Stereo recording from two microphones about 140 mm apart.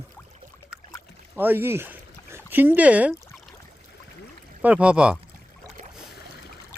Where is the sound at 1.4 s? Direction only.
15° right (ahead or behind).